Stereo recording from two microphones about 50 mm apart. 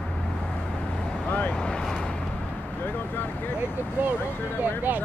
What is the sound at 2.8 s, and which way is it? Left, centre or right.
Speech, left.